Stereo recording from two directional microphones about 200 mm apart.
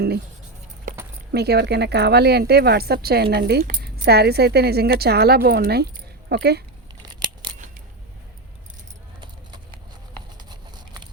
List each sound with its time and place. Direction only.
1.3 s a woman's voice: 55° right (ahead or behind)
7.1 s scissors: 20° right (ahead or behind)
9.2 s clip-clop: 25° right (ahead or behind)
10.5 s a sound: 20° right (ahead or behind)